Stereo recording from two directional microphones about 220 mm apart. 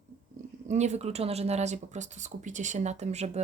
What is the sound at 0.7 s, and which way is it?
Speech, 30° right (ahead or behind).